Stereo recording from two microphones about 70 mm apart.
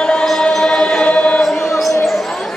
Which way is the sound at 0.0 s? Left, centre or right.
Centre.